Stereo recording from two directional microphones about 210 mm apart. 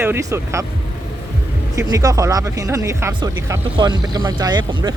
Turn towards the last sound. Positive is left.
turn(degrees=-20)  # may be behind; listen again after turning